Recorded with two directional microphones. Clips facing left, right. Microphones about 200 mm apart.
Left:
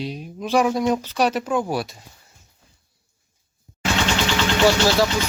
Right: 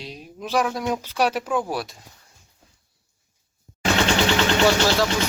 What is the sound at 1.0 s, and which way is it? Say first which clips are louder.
Speech: left 2 dB; 10° right (ahead or behind).